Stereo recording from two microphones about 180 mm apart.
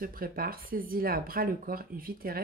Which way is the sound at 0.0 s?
55° right (ahead or behind).